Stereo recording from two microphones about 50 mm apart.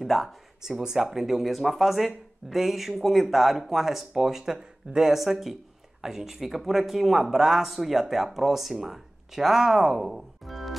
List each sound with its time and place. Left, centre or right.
0.0 s speech: centre